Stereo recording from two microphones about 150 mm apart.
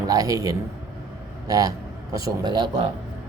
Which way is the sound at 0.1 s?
25° right (ahead or behind).